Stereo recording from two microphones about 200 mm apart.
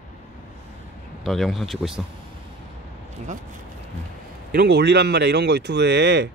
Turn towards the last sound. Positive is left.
turn(degrees=-60)  # may be behind; listen again after turning